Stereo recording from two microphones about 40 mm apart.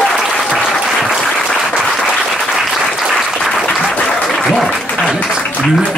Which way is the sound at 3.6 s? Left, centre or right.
Left.